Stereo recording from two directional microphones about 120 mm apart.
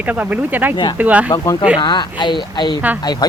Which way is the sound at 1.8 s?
40° left (ahead or behind).